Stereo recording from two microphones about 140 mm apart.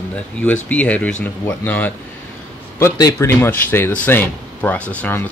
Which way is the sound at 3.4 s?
15° left (ahead or behind).